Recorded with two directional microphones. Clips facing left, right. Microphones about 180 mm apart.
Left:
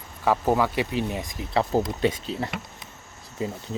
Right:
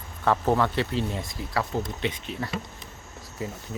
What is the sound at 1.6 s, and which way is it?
Speech, 35° left (ahead or behind).